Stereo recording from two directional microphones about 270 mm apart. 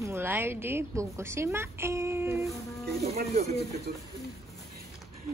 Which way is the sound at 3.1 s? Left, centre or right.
Right.